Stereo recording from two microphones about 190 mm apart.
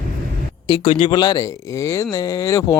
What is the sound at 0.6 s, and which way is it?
Speech, 25° left (ahead or behind).